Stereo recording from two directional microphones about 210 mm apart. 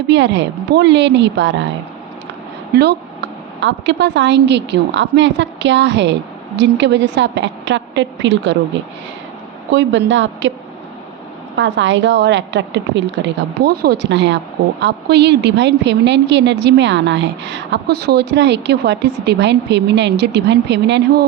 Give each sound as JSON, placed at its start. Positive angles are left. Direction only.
{"t": 0.1, "sound": "a woman's voice", "side_deg": -55}
{"t": 3.6, "sound": "a woman's voice", "side_deg": -60}
{"t": 9.7, "sound": "a woman's voice", "side_deg": -60}
{"t": 11.5, "sound": "a woman's voice", "side_deg": -60}